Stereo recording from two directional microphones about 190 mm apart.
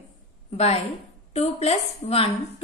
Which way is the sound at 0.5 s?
30° left (ahead or behind).